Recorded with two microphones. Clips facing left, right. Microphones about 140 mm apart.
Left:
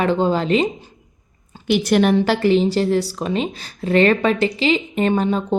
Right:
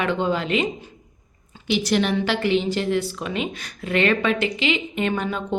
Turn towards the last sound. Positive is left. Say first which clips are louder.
# left 6 dB
turn(degrees=35)  # may be behind; listen again after turning